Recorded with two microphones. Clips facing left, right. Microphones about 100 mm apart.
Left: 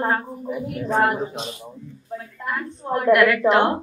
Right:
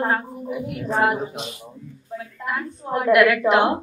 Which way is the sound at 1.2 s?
30° left (ahead or behind).